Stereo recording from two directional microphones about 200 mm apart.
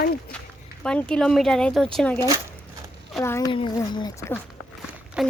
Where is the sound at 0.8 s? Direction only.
5° left (ahead or behind).